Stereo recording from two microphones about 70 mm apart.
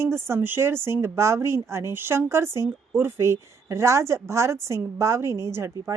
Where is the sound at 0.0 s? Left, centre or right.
Right.